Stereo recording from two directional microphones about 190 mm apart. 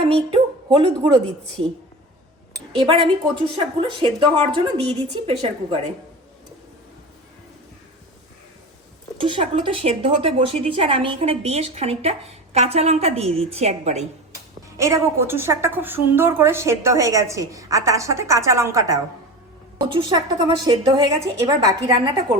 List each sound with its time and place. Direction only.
0.0 s a woman's voice: 30° right (ahead or behind)
2.7 s a woman's voice: 30° right (ahead or behind)
9.1 s speech: 25° right (ahead or behind)
14.8 s a woman's voice: 15° right (ahead or behind)